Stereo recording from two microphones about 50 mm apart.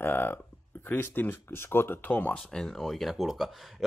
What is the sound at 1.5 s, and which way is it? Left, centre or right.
Speech, left.